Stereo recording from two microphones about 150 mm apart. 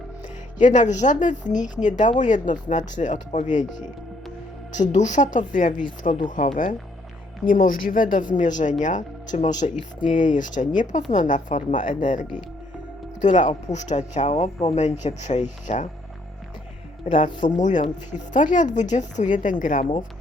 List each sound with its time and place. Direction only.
0.6 s a woman's voice: 55° left (ahead or behind)
17.1 s a woman's voice: 60° left (ahead or behind)